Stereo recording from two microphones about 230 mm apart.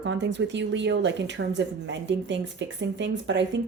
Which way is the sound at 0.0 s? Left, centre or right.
Right.